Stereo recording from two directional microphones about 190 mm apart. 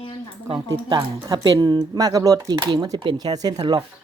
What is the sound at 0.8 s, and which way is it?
Speech, 20° right (ahead or behind).